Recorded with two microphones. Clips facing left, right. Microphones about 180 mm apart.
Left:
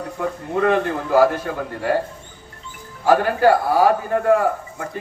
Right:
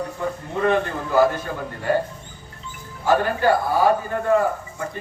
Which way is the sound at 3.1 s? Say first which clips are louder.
Left 3 dB; 80° left.